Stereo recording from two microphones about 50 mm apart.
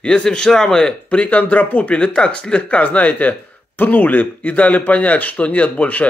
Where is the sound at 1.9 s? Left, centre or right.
Left.